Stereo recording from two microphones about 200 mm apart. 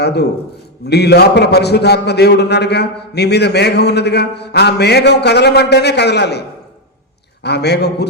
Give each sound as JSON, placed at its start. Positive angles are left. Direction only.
{"t": 0.0, "sound": "a man's voice", "side_deg": 55}
{"t": 7.4, "sound": "a man's voice", "side_deg": 55}